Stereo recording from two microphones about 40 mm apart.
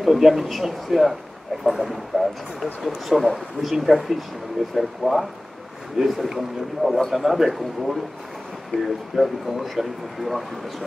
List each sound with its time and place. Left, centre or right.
0.0 s speech: centre